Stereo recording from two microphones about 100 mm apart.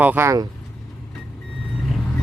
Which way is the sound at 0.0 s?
20° right (ahead or behind).